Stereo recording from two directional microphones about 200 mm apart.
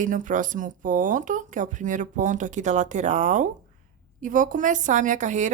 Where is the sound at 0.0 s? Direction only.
40° right (ahead or behind).